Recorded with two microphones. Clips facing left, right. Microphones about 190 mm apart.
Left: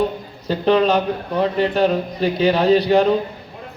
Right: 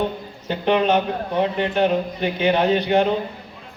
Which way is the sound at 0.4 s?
35° left (ahead or behind).